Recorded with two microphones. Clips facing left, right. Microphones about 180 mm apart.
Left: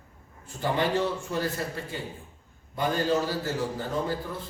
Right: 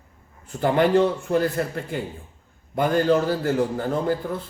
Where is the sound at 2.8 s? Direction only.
55° right (ahead or behind).